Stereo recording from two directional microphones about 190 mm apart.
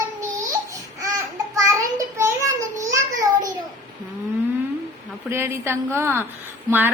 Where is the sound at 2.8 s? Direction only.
15° right (ahead or behind).